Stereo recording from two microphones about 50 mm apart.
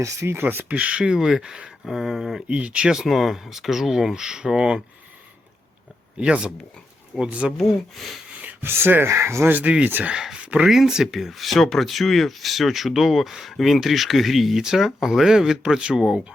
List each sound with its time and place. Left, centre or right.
0.0 s speech: right
0.3 s speech: right
0.7 s speech: right
1.8 s speech: centre
2.5 s speech: right
3.1 s speech: centre
6.1 s speech: centre
7.5 s speech: centre
8.3 s a sound: right
8.6 s speech: right
9.0 s speech: right
9.5 s speech: right
10.3 s a sound: right
10.6 s speech: centre